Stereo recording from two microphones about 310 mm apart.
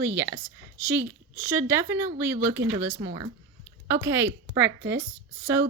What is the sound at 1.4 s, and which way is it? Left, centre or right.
A woman's voice, centre.